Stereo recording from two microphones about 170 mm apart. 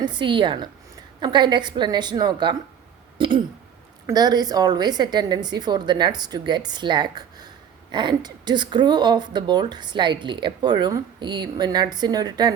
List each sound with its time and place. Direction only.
0.0 s speech: 25° right (ahead or behind)
3.2 s a sound: 30° right (ahead or behind)
4.0 s speech: 25° right (ahead or behind)